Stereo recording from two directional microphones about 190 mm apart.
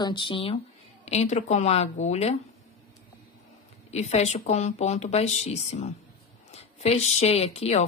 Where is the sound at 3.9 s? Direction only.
35° left (ahead or behind).